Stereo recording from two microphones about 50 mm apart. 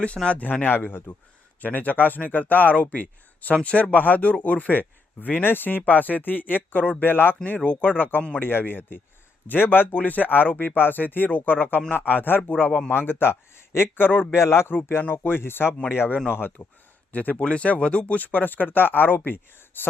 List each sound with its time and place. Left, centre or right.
0.3 s speech: left
7.0 s speech: left
7.4 s speech: left
7.9 s speech: left
12.5 s speech: left
12.9 s speech: left
14.3 s speech: left
15.0 s speech: left
16.6 s speech: left
18.2 s speech: left